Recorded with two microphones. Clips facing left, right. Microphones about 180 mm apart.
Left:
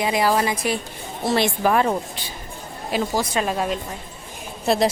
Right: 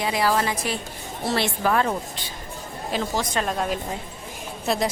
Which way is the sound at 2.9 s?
10° left (ahead or behind).